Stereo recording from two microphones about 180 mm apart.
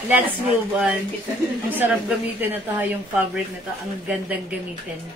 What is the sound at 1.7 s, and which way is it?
A woman's voice, 10° right (ahead or behind).